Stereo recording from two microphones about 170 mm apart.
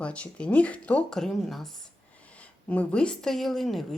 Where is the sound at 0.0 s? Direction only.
5° left (ahead or behind).